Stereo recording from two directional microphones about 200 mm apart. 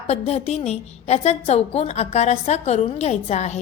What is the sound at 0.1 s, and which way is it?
A woman's voice, 35° left (ahead or behind).